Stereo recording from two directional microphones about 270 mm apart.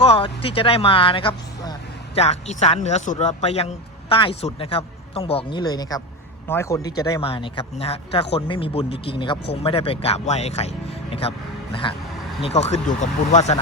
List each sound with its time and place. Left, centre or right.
0.0 s speech: left